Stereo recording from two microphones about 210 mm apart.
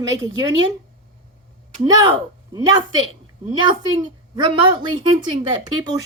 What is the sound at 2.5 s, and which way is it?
A woman's voice, 20° right (ahead or behind).